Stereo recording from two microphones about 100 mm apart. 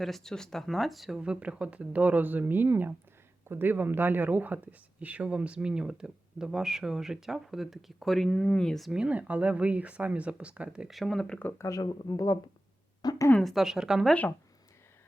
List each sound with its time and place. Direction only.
0.0 s speech: 5° left (ahead or behind)
11.5 s speech: 30° left (ahead or behind)
13.0 s a sound: 40° left (ahead or behind)
13.4 s a woman's voice: centre (ahead or behind)